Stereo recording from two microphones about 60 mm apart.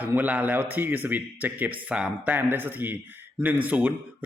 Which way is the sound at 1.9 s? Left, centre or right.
Centre.